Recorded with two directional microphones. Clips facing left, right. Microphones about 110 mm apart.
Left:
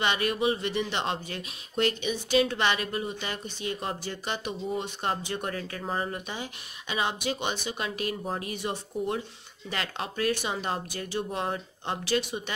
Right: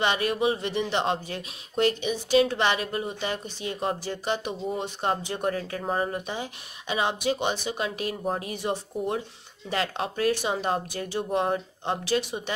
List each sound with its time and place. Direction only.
0.0 s speech: 30° right (ahead or behind)